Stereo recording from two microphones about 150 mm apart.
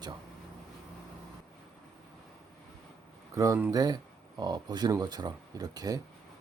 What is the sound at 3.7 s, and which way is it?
Speech, 25° right (ahead or behind).